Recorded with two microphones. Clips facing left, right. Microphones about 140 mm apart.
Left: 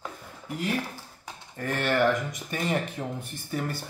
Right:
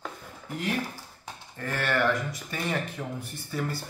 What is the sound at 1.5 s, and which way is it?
Speech, 20° left (ahead or behind).